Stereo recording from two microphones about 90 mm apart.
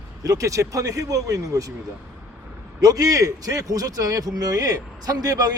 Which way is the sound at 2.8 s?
40° right (ahead or behind).